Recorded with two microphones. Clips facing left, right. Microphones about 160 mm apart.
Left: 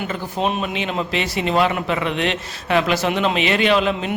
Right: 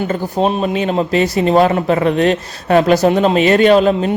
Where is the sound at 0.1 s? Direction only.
35° right (ahead or behind).